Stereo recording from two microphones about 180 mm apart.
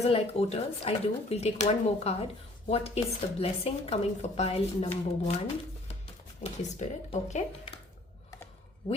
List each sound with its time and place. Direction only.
0.0 s a woman's voice: 35° left (ahead or behind)
6.6 s a woman's voice: 40° left (ahead or behind)
7.7 s a sound: 30° left (ahead or behind)